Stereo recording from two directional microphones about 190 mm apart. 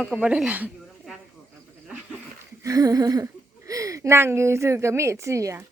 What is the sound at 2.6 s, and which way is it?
Speech, 20° right (ahead or behind).